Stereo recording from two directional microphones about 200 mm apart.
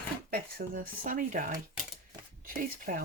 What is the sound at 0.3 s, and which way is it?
A woman's voice, 45° right (ahead or behind).